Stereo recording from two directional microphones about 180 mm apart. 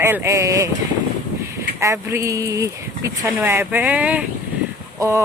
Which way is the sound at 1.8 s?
15° right (ahead or behind).